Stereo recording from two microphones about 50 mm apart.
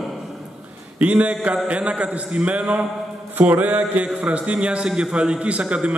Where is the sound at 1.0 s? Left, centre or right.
Right.